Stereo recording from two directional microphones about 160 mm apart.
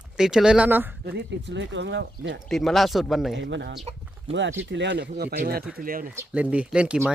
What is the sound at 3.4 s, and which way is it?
Speech, 90° right.